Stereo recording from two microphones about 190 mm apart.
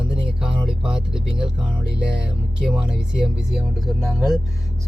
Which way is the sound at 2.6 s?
5° right (ahead or behind).